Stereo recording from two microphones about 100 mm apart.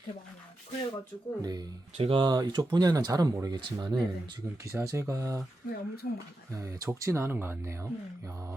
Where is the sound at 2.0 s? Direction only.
70° right (ahead or behind).